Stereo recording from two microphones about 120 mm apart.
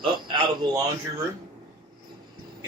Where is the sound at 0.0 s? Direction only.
40° right (ahead or behind).